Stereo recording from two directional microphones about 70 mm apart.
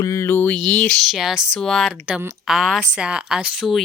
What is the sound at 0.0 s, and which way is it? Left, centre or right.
Speech, left.